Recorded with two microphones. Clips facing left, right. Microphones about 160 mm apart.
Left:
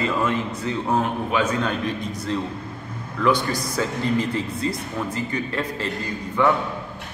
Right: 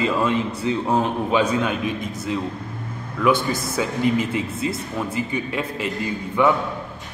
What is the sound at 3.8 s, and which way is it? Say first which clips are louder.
Speech: right 2 dB; 10° right (ahead or behind).